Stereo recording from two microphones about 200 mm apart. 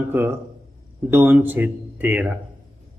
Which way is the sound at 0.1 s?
10° right (ahead or behind).